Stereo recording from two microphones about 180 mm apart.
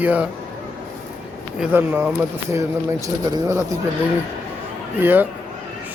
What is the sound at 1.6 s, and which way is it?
Speech, 10° right (ahead or behind).